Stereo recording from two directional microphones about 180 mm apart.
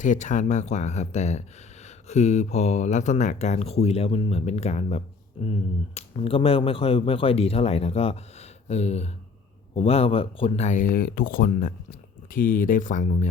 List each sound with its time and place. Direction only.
0.0 s speech: 45° left (ahead or behind)